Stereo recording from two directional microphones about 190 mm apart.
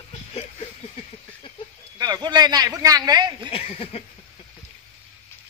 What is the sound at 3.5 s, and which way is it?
Speech, 30° left (ahead or behind).